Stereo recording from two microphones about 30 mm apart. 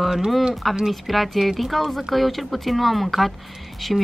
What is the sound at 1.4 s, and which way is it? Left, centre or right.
A woman's voice, centre.